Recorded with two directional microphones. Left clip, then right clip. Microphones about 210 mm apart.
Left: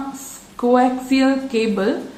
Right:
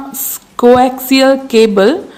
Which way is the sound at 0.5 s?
55° right (ahead or behind).